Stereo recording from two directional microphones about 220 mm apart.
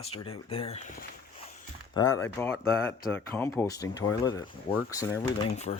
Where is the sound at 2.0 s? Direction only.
15° left (ahead or behind).